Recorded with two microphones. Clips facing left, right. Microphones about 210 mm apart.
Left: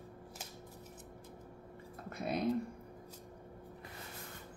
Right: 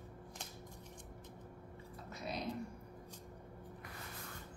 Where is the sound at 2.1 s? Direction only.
55° left (ahead or behind).